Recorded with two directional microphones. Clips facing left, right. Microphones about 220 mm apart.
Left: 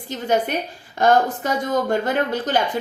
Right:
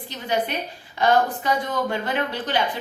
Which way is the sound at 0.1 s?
45° left (ahead or behind).